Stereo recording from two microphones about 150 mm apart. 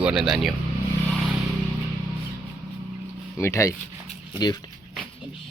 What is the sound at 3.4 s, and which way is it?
Speech, 20° left (ahead or behind).